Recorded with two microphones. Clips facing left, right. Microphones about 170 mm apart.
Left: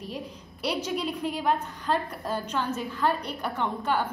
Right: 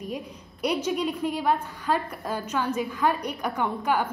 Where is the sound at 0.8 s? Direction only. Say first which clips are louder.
Right 3 dB; 10° right (ahead or behind).